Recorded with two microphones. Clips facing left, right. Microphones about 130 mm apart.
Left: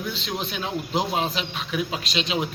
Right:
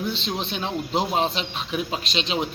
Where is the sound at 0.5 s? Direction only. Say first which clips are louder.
Right 1 dB; 30° right (ahead or behind).